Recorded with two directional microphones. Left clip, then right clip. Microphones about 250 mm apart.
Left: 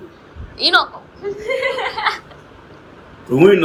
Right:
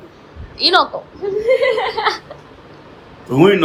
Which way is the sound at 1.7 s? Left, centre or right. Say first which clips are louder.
Right 2 dB; right.